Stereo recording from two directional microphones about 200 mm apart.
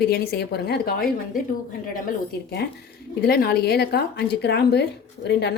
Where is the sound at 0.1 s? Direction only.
55° left (ahead or behind).